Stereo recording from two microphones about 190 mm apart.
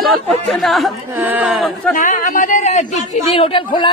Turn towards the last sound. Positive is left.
turn(degrees=25)  # may be behind; listen again after turning